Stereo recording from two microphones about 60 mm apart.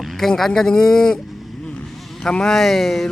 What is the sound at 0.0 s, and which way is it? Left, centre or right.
Speech, centre.